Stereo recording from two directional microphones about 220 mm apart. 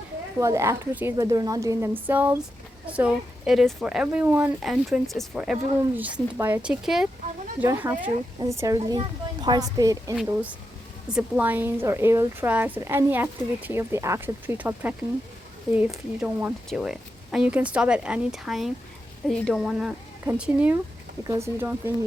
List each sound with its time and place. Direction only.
0.3 s a woman's voice: 15° right (ahead or behind)